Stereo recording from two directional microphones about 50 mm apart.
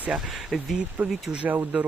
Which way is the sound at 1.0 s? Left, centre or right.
Right.